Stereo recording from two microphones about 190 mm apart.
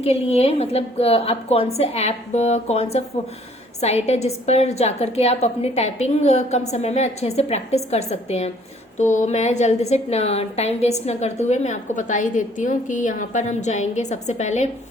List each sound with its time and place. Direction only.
0.0 s a woman's voice: 30° left (ahead or behind)